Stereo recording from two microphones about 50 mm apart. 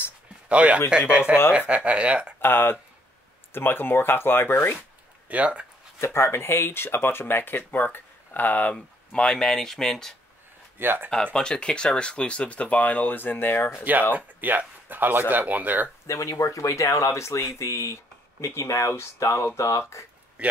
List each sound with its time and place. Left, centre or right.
0.5 s speech: right
2.4 s speech: left
5.3 s speech: right
5.9 s speech: left
8.7 s speech: centre
10.8 s speech: right
11.3 s speech: centre; by 13.7 s left
14.1 s speech: right
16.1 s speech: left
20.4 s a sound: right